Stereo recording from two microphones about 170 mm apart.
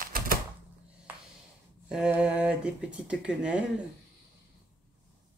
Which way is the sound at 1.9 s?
5° right (ahead or behind).